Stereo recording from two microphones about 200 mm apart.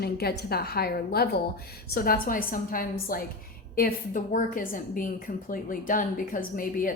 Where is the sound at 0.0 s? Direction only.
50° left (ahead or behind).